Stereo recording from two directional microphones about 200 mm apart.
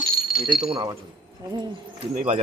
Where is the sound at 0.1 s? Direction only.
50° left (ahead or behind).